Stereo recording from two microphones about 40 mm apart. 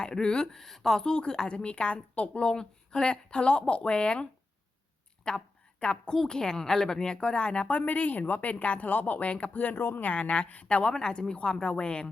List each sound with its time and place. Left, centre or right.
0.0 s a woman's voice: left
0.5 s a woman's voice: centre
1.0 s a woman's voice: left
7.7 s speech: left
9.7 s speech: left
10.0 s speech: left
10.9 s a woman's voice: centre